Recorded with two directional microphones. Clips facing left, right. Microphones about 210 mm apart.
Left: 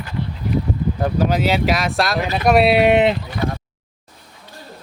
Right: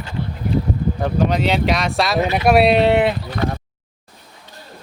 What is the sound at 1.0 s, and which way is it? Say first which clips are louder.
Speech: even; 5° left (ahead or behind).